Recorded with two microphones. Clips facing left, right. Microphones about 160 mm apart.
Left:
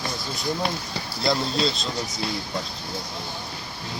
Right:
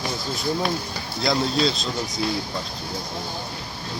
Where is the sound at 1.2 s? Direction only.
Centre (ahead or behind).